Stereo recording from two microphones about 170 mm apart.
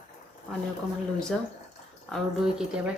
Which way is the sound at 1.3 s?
Centre (ahead or behind).